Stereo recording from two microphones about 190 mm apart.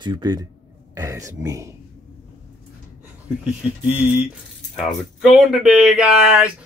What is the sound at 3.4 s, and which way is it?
Speech, 5° right (ahead or behind).